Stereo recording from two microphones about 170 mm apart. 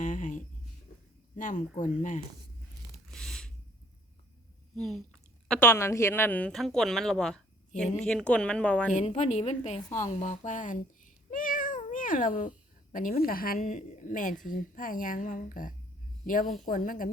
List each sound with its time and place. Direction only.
0.0 s a sound: 50° left (ahead or behind)
1.4 s a woman's voice: 50° left (ahead or behind)
3.1 s a sound: centre (ahead or behind)
4.7 s speech: centre (ahead or behind)
5.5 s speech: 15° left (ahead or behind)
8.9 s a woman's voice: 45° left (ahead or behind)